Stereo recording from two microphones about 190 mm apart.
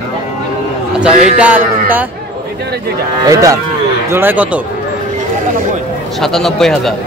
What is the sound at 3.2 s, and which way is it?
Speech, 20° right (ahead or behind).